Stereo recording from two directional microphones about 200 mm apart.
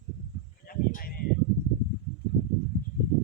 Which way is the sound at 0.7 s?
45° left (ahead or behind).